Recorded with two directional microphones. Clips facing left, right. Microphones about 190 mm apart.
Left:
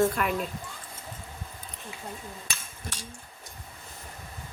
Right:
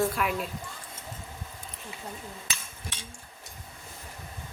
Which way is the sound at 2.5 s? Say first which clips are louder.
Left 1 dB; 40° left (ahead or behind).